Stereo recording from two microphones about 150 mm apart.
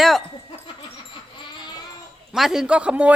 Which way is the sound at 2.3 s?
Centre (ahead or behind).